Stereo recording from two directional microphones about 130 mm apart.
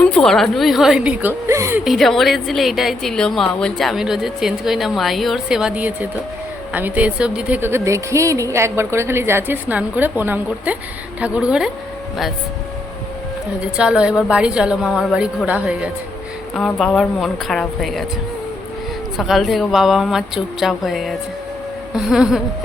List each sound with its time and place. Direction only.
0.0 s a woman's voice: 5° left (ahead or behind); by 1.8 s 20° right (ahead or behind)
1.8 s a woman's voice: centre (ahead or behind)
13.6 s a woman's voice: 5° right (ahead or behind)
16.6 s a woman's voice: 5° left (ahead or behind)
19.1 s a woman's voice: centre (ahead or behind)